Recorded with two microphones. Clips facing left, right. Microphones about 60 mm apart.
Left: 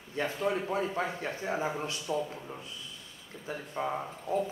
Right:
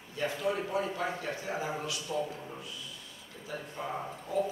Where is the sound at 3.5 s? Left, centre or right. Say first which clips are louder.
Left 2 dB; left.